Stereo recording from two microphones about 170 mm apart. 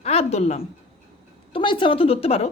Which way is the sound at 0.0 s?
40° left (ahead or behind).